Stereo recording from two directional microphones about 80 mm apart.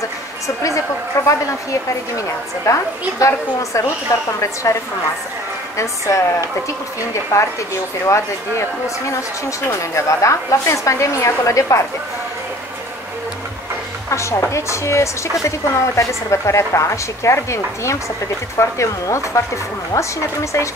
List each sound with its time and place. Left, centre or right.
0.6 s speech: left
14.5 s speech: left